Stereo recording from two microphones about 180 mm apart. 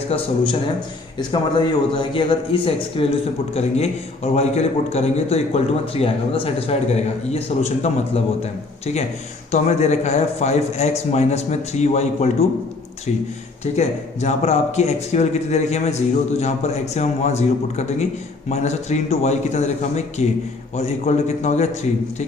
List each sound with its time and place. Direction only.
0.1 s a man's voice: 35° left (ahead or behind)
1.3 s a man's voice: 25° left (ahead or behind)
9.5 s a man's voice: 40° left (ahead or behind)
13.7 s a man's voice: 40° left (ahead or behind)